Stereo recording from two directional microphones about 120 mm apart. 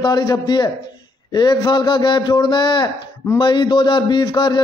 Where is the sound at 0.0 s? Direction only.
35° left (ahead or behind).